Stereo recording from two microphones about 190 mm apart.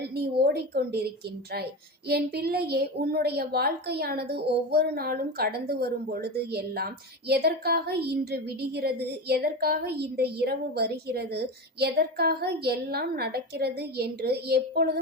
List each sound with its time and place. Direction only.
0.2 s a woman's voice: 55° right (ahead or behind)
2.0 s a woman's voice: 55° right (ahead or behind)